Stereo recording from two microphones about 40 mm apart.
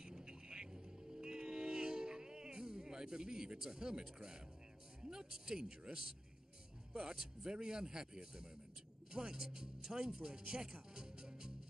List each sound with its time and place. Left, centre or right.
0.0 s music: centre
5.0 s a man's voice: centre